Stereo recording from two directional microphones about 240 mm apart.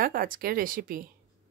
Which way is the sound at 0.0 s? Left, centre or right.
Right.